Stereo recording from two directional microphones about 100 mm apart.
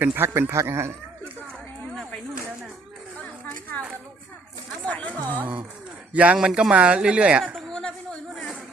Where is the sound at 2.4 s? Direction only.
10° right (ahead or behind).